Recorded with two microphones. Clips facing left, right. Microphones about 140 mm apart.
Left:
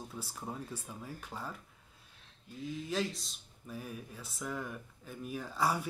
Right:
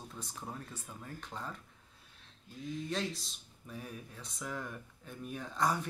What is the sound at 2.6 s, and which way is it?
Speech, centre (ahead or behind).